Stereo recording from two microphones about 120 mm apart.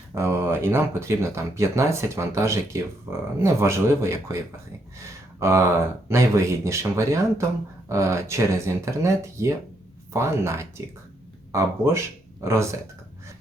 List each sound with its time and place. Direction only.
0.1 s speech: 25° right (ahead or behind)
5.4 s speech: 25° right (ahead or behind)